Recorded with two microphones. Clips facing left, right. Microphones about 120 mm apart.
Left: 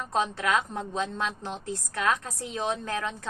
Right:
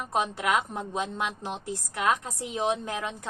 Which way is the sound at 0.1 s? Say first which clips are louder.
Even; 15° right (ahead or behind).